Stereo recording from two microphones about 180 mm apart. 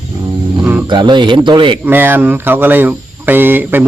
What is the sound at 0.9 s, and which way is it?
Speech, 25° right (ahead or behind).